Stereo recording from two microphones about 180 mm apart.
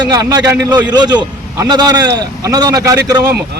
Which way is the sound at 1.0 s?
20° right (ahead or behind).